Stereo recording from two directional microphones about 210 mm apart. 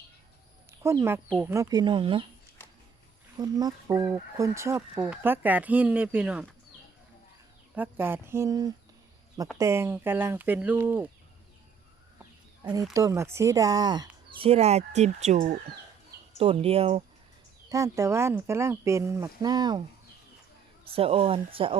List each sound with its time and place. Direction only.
0.7 s speech: 10° right (ahead or behind)
3.3 s fowl: 20° right (ahead or behind)
7.8 s fowl: 10° right (ahead or behind)
12.6 s speech: 15° right (ahead or behind)
17.7 s fowl: 15° right (ahead or behind)
20.8 s speech: 25° right (ahead or behind)